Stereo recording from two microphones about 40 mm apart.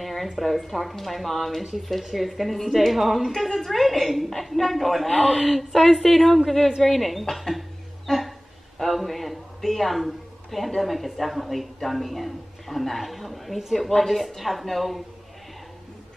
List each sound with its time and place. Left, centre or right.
0.0 s a woman's voice: centre